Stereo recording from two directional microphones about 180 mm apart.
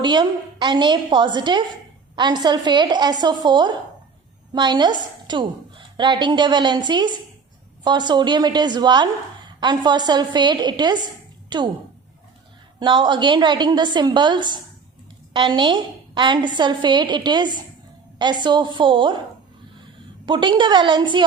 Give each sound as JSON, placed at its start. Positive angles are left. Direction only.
{"t": 0.0, "sound": "a woman's voice", "side_deg": -25}
{"t": 12.8, "sound": "a woman's voice", "side_deg": -25}
{"t": 20.2, "sound": "a woman's voice", "side_deg": -25}